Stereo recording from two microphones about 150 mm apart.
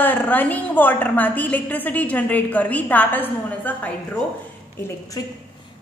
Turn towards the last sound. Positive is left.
turn(degrees=20)  # may be behind; listen again after turning